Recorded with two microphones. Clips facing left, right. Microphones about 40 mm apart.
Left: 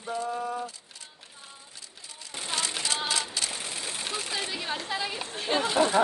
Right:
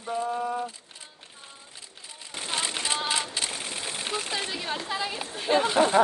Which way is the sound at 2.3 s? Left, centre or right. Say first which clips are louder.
Right 1 dB; right.